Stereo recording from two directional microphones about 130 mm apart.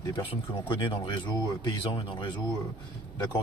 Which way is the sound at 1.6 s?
40° left (ahead or behind).